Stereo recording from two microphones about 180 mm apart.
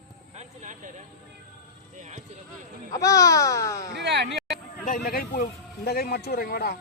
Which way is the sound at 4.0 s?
75° right (ahead or behind).